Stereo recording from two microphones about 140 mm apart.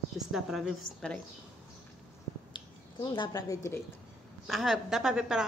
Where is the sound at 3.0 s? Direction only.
30° left (ahead or behind).